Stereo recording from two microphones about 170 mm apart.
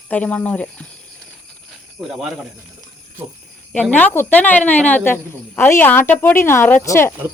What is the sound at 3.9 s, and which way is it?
A woman's voice, 10° left (ahead or behind).